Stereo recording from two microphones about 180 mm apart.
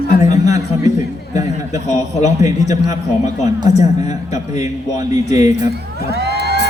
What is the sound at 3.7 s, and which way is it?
Speech, 40° left (ahead or behind).